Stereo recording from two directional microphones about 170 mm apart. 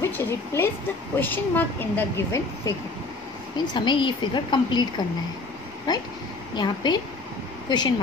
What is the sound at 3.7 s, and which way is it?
A woman's voice, 25° left (ahead or behind).